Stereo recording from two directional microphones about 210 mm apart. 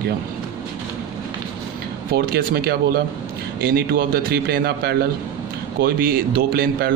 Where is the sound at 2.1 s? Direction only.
45° right (ahead or behind).